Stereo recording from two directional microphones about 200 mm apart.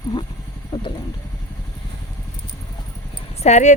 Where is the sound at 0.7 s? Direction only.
20° left (ahead or behind).